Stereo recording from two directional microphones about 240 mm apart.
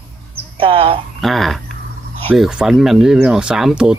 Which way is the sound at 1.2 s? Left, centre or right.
Centre.